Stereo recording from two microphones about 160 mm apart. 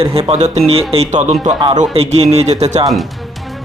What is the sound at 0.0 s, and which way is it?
Speech, 35° right (ahead or behind).